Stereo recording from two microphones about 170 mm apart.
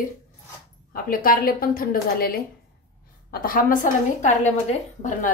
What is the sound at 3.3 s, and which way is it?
Speech, 55° left (ahead or behind).